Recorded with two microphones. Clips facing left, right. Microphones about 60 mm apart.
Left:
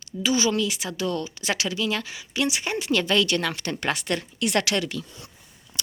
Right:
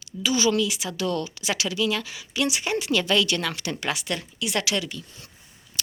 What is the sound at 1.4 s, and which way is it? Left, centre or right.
Speech, left.